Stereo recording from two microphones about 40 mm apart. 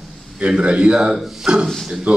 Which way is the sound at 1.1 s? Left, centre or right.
Centre.